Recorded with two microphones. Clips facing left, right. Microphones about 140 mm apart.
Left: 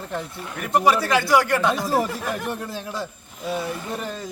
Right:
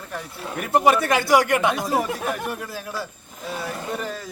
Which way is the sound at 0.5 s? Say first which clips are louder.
Right 1 dB; 25° right (ahead or behind).